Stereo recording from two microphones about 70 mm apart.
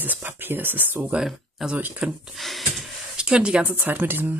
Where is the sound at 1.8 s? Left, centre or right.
Right.